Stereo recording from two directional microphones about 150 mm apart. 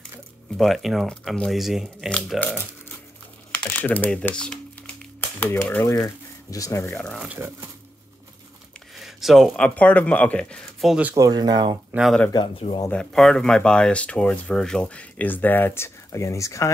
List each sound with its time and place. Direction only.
0.6 s speech: centre (ahead or behind)
3.5 s speech: 10° left (ahead or behind)
7.0 s speech: 5° left (ahead or behind)
7.2 s speech: 15° right (ahead or behind)
8.9 s speech: centre (ahead or behind)
11.1 s speech: 25° right (ahead or behind)
11.9 s speech: 5° right (ahead or behind)
12.5 s speech: 40° left (ahead or behind)
12.9 s speech: 5° left (ahead or behind); by 16.7 s 20° left (ahead or behind)